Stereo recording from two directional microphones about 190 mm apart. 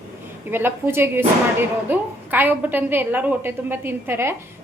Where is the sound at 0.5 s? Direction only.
10° right (ahead or behind).